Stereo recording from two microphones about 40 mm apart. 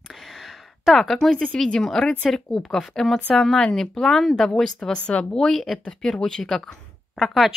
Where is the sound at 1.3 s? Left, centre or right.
Centre.